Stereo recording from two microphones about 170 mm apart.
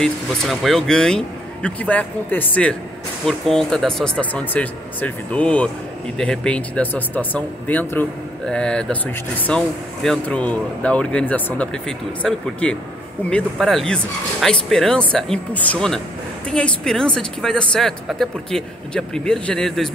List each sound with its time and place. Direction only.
0.0 s speech: centre (ahead or behind)